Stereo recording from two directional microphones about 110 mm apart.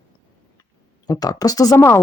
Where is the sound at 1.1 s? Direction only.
35° left (ahead or behind).